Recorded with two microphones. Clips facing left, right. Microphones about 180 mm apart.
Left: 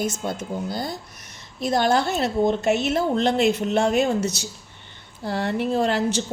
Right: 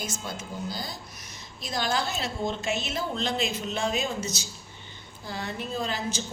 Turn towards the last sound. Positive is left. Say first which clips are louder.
# left 10 dB
turn(degrees=70)  # may be behind; listen again after turning